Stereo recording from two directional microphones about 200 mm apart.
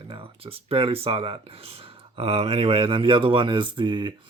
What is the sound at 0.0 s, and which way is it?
Speech, 25° right (ahead or behind).